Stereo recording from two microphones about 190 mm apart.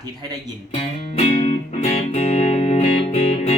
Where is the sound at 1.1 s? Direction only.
40° left (ahead or behind).